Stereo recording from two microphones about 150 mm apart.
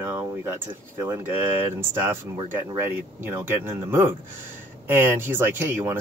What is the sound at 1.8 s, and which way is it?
Speech, 15° right (ahead or behind).